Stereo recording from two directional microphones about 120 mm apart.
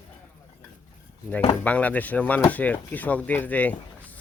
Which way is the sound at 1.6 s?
15° left (ahead or behind).